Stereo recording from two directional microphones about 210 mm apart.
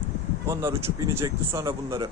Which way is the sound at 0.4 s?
10° right (ahead or behind).